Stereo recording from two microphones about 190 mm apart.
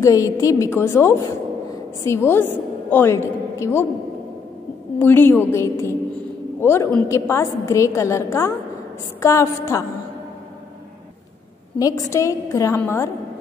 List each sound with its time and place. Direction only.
0.0 s a woman's voice: 15° left (ahead or behind)
4.9 s a woman's voice: 10° left (ahead or behind)
11.8 s a woman's voice: 15° left (ahead or behind)